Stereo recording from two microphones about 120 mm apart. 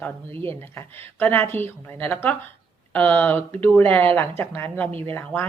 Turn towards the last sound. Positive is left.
turn(degrees=15)  # may be behind; listen again after turning